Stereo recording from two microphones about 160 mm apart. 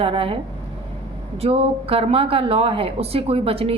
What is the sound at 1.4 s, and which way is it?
A woman's voice, 35° right (ahead or behind).